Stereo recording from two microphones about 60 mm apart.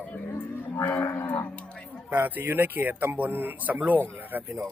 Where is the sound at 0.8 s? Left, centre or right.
Left.